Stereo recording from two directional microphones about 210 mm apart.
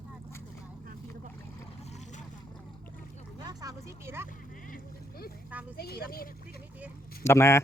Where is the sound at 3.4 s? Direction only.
20° right (ahead or behind).